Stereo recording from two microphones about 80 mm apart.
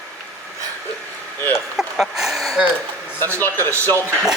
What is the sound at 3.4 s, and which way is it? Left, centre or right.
Speech, left.